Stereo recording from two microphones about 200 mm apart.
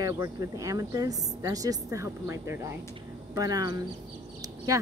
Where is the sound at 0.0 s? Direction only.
15° right (ahead or behind).